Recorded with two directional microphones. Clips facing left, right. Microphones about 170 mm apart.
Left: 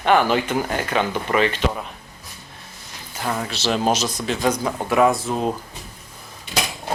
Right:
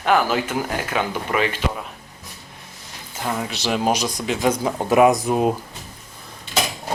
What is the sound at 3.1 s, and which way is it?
Speech, 15° right (ahead or behind).